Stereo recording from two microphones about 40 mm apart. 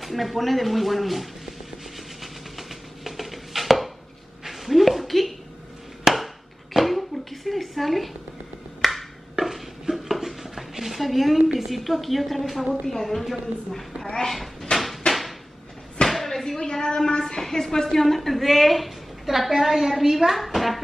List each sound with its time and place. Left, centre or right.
0.0 s a woman's voice: centre
2.5 s chopping: centre
4.5 s a sound: centre
9.4 s dishes: centre
11.7 s a woman's voice: centre
14.1 s cat: centre
16.1 s a sound: centre
16.5 s a woman's voice: centre